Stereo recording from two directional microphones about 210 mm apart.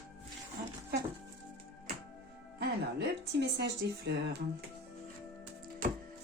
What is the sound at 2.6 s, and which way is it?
Music, 50° right (ahead or behind).